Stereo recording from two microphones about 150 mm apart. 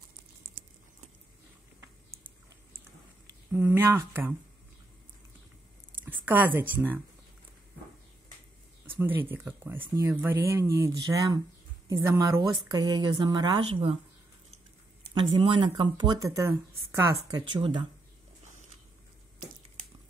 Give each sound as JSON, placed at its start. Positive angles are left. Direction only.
{"t": 3.5, "sound": "speech", "side_deg": -15}
{"t": 6.0, "sound": "speech", "side_deg": -10}
{"t": 8.8, "sound": "speech", "side_deg": -15}
{"t": 15.1, "sound": "speech", "side_deg": -30}
{"t": 17.5, "sound": "speech", "side_deg": -35}